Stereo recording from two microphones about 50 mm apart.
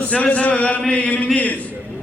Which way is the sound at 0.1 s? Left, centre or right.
Left.